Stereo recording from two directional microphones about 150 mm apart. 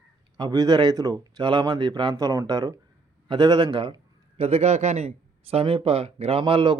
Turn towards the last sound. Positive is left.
turn(degrees=-35)  # may be behind; listen again after turning